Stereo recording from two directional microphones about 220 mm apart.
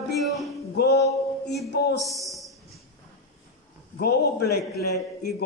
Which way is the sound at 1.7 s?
50° left (ahead or behind).